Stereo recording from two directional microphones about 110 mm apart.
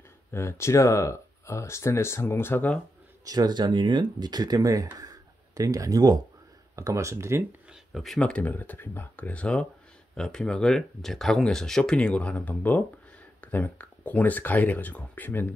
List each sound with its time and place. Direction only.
0.3 s speech: 25° left (ahead or behind)
3.3 s speech: 40° right (ahead or behind)
7.9 s speech: centre (ahead or behind)